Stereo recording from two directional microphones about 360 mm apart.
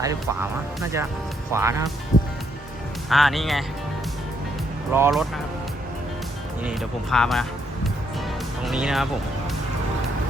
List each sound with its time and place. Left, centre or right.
0.0 s speech: centre
2.1 s music: left
3.1 s speech: centre
4.9 s speech: centre
6.6 s speech: centre
8.6 s speech: centre